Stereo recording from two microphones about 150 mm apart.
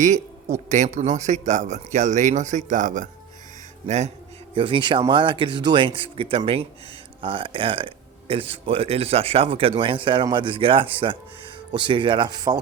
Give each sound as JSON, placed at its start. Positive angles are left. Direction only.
{"t": 0.0, "sound": "speech", "side_deg": -50}
{"t": 4.5, "sound": "speech", "side_deg": -35}